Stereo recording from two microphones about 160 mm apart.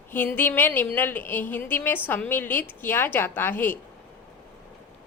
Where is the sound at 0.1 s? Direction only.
10° left (ahead or behind).